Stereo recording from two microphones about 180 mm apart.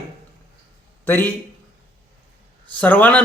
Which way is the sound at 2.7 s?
10° left (ahead or behind).